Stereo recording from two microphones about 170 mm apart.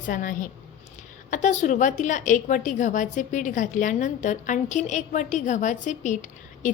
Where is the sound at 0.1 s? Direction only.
55° left (ahead or behind).